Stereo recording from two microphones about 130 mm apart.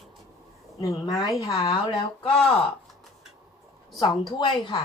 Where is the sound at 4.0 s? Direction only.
35° left (ahead or behind).